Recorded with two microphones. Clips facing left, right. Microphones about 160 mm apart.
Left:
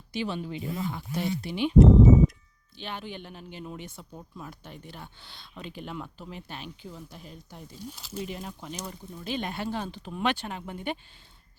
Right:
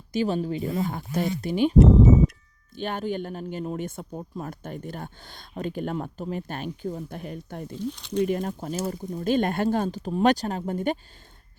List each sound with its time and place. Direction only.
0.1 s speech: 45° right (ahead or behind)
2.7 s speech: 45° right (ahead or behind)
7.8 s speech: 5° left (ahead or behind)
8.2 s speech: 50° right (ahead or behind)